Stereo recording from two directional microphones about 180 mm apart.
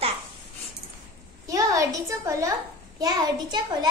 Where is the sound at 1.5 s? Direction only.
20° right (ahead or behind).